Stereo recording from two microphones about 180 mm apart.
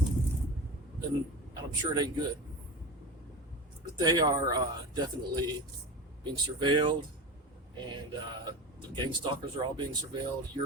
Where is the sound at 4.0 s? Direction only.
25° right (ahead or behind).